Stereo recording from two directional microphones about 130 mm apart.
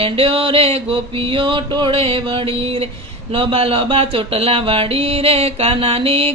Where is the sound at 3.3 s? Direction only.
45° right (ahead or behind).